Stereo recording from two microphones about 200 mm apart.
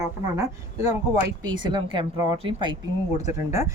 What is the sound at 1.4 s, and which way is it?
A woman's voice, 25° right (ahead or behind).